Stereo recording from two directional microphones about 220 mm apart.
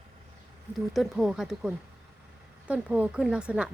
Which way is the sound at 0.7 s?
Centre (ahead or behind).